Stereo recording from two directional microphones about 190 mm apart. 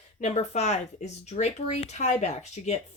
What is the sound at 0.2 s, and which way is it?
Speech, 35° left (ahead or behind).